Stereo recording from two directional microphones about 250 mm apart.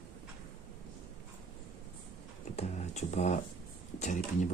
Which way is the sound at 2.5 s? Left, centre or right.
Left.